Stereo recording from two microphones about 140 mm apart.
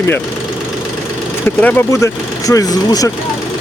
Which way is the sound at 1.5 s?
15° left (ahead or behind).